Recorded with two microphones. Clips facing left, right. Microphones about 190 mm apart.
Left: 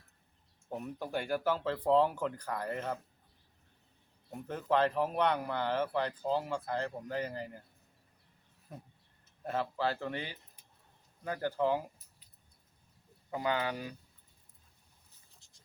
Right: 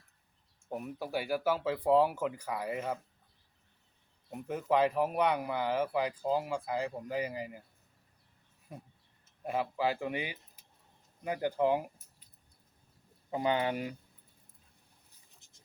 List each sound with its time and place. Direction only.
0.7 s speech: 10° right (ahead or behind)
4.3 s speech: 10° right (ahead or behind)
9.4 s speech: 10° right (ahead or behind)
13.3 s speech: 20° right (ahead or behind)